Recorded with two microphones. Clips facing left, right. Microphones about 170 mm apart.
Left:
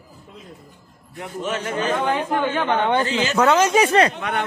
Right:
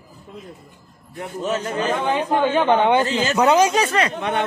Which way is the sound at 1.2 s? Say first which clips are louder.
Right 2 dB; 35° right (ahead or behind).